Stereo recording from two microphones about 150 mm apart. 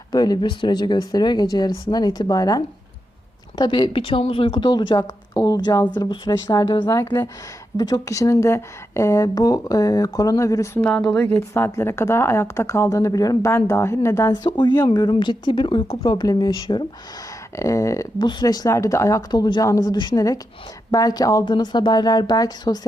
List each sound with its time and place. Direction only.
0.1 s a woman's voice: 25° left (ahead or behind)
10.8 s a woman's voice: 10° left (ahead or behind); by 22.9 s 25° left (ahead or behind)